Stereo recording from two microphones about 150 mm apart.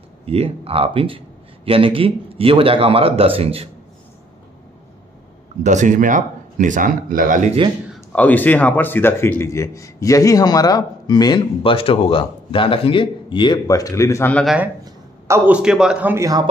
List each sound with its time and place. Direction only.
0.2 s speech: 40° right (ahead or behind)
5.6 s speech: 55° right (ahead or behind)
8.1 s speech: 10° left (ahead or behind)
14.3 s speech: centre (ahead or behind)
14.9 s a man's voice: 20° right (ahead or behind)